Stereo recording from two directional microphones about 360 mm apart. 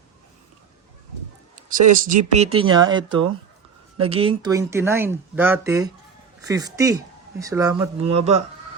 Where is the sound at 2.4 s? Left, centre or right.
Centre.